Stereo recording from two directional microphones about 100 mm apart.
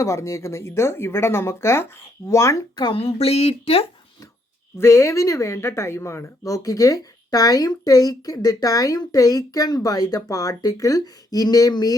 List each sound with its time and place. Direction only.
0.0 s a woman's voice: 30° left (ahead or behind)
2.9 s speech: 75° left (ahead or behind)
4.8 s a woman's voice: 25° left (ahead or behind)